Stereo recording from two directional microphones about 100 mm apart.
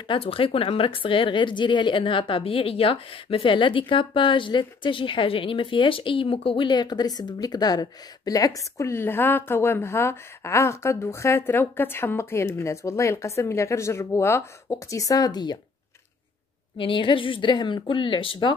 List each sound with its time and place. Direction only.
0.1 s a woman's voice: 65° left (ahead or behind); by 15.6 s 45° left (ahead or behind)
16.7 s a woman's voice: 55° left (ahead or behind)